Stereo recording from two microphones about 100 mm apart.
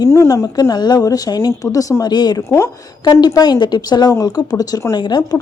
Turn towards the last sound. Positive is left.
turn(degrees=45)  # may be behind; listen again after turning